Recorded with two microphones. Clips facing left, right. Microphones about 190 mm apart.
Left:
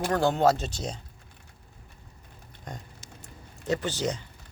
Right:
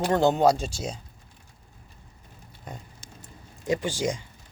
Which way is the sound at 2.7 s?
5° right (ahead or behind).